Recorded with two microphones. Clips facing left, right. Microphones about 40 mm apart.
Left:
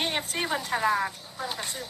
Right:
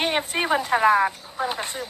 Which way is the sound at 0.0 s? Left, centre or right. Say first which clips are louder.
Right 6 dB; right.